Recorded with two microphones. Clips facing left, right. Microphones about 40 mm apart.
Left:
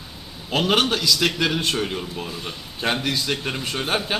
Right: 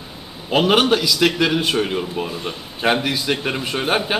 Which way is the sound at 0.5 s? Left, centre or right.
Centre.